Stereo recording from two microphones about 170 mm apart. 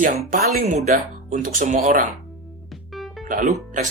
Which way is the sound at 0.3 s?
60° right (ahead or behind).